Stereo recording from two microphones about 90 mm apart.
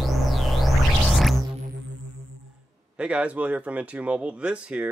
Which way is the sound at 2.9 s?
10° right (ahead or behind).